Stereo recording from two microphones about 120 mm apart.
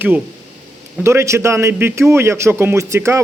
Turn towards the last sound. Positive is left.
turn(degrees=-25)  # may be behind; listen again after turning